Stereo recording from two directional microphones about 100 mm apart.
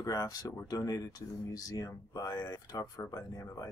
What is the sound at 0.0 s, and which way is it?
Speech, 35° left (ahead or behind).